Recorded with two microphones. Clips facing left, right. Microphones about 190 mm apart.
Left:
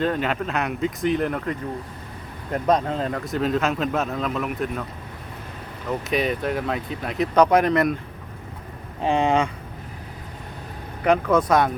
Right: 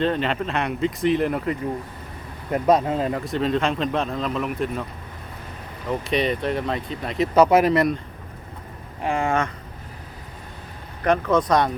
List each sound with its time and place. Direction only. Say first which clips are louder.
0.0 s speech: right 1 dB; 5° left (ahead or behind)
5.9 s speech: right 1 dB; 5° left (ahead or behind)
9.0 s speech: left 3 dB; 20° left (ahead or behind)
11.0 s speech: left 1 dB; 10° left (ahead or behind)